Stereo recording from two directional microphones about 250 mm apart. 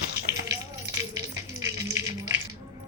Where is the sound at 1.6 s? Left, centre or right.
Centre.